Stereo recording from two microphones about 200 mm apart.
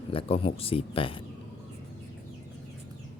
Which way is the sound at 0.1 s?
25° left (ahead or behind).